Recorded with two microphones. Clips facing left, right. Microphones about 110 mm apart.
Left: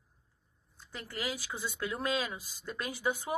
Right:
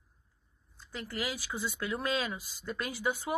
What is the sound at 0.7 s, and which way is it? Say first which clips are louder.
A woman's voice: right 3 dB; 20° left (ahead or behind).